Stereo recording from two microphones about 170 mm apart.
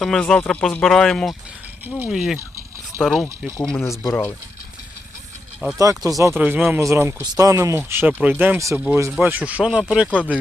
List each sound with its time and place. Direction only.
0.0 s speech: 5° left (ahead or behind)
3.8 s speech: 15° left (ahead or behind)
5.7 s speech: 20° right (ahead or behind); by 10.1 s 5° right (ahead or behind)